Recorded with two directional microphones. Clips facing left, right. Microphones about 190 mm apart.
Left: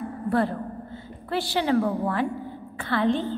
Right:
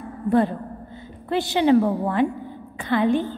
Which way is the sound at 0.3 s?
20° right (ahead or behind).